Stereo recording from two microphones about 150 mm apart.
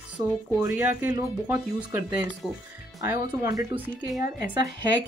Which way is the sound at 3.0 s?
20° right (ahead or behind).